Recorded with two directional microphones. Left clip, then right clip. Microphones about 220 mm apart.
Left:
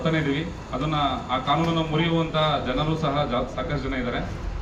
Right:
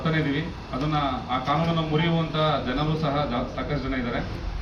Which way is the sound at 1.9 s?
15° left (ahead or behind).